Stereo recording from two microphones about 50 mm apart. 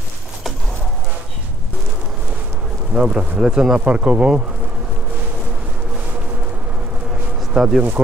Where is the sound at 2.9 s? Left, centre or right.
Centre.